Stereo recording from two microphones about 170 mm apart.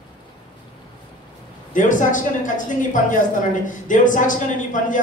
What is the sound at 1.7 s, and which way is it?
A man's voice, 50° left (ahead or behind).